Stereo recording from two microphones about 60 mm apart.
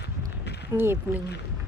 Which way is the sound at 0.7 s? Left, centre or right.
Right.